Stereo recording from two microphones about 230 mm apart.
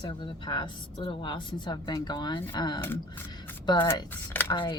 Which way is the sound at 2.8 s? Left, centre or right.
Centre.